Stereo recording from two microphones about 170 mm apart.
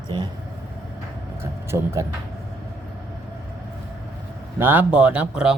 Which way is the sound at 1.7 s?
20° right (ahead or behind).